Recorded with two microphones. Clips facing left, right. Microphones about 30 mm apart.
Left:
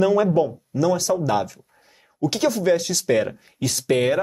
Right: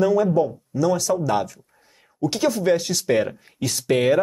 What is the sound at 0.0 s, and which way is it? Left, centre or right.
Speech, left.